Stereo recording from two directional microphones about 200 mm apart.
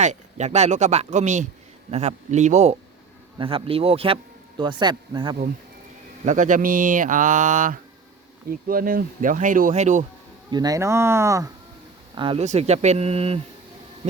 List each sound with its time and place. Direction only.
0.0 s speech: 35° right (ahead or behind)
6.2 s speech: 40° right (ahead or behind)
10.5 s speech: 20° right (ahead or behind)